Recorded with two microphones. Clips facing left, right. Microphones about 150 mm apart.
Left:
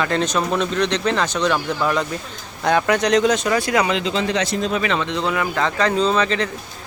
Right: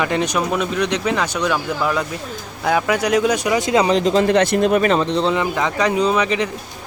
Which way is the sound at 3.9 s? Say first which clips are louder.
Right 6 dB; 45° right (ahead or behind).